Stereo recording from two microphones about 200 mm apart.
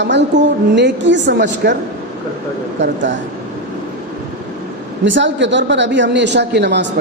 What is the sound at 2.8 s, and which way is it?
Speech, 65° right (ahead or behind).